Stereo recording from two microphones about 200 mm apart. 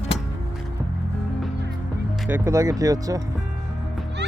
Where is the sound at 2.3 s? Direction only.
15° right (ahead or behind).